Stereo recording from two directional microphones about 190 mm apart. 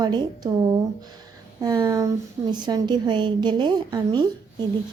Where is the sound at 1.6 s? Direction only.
20° right (ahead or behind).